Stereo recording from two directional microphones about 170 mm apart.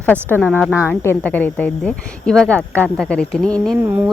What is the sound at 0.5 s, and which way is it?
Speech, 10° right (ahead or behind).